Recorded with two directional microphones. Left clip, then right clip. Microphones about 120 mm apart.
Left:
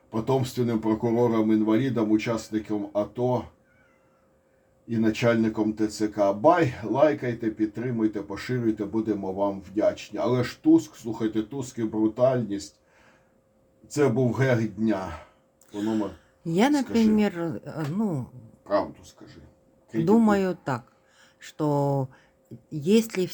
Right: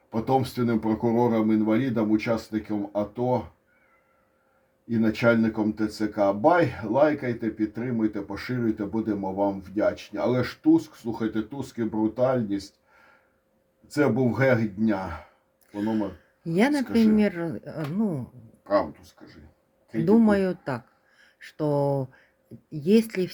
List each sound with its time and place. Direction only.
0.1 s speech: 45° right (ahead or behind)
4.9 s speech: 45° right (ahead or behind)
13.8 s speech: 45° right (ahead or behind)
15.7 s speech: 15° left (ahead or behind)
19.9 s speech: 15° left (ahead or behind)